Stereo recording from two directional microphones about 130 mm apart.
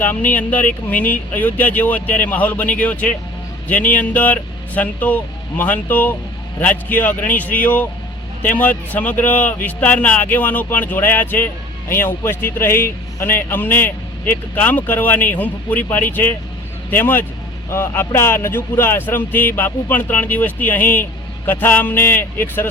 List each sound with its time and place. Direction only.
0.0 s speech: 15° left (ahead or behind)